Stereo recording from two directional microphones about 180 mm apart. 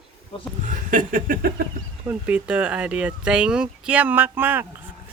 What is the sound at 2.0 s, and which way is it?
Speech, 10° right (ahead or behind).